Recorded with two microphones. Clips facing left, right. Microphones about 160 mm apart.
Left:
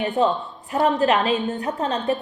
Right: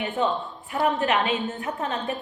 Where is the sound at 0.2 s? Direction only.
35° left (ahead or behind).